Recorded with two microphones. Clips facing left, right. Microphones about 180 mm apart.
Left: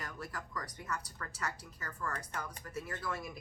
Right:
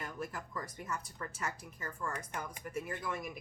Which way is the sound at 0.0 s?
20° right (ahead or behind).